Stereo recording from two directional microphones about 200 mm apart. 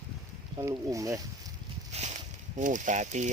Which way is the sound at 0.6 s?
15° right (ahead or behind).